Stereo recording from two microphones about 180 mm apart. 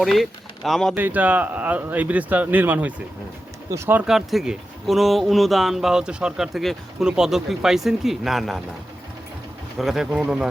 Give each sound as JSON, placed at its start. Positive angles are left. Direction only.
{"t": 0.0, "sound": "speech", "side_deg": 0}
{"t": 0.9, "sound": "speech", "side_deg": -10}
{"t": 9.7, "sound": "speech", "side_deg": 0}